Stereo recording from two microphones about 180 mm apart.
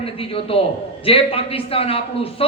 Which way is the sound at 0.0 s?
30° left (ahead or behind).